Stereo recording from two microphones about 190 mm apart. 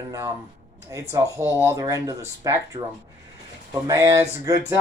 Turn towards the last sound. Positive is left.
turn(degrees=-15)  # may be behind; listen again after turning